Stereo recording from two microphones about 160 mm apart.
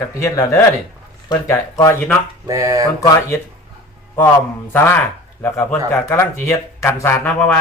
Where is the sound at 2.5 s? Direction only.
20° right (ahead or behind).